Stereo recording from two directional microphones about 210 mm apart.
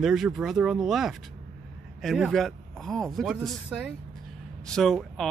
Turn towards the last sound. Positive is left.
turn(degrees=0)  # may be behind; listen again after turning